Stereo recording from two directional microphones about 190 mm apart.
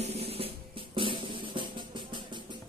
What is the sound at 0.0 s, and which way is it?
Music, 35° right (ahead or behind).